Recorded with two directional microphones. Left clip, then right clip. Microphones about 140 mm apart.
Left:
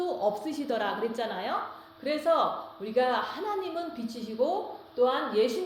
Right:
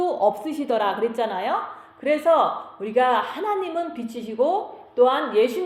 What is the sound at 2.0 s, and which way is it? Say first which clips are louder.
Speech: right 7 dB; 45° right (ahead or behind).